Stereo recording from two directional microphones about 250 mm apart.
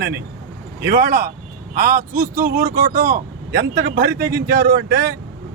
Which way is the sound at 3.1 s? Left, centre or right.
Right.